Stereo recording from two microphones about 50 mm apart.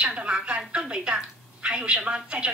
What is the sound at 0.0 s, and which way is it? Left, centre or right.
A woman's voice, right.